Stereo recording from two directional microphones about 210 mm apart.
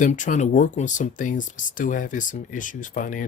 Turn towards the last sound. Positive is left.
turn(degrees=40)  # may be behind; listen again after turning